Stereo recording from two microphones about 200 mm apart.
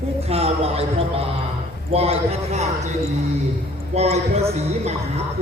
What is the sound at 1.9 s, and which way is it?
Speech, 30° right (ahead or behind).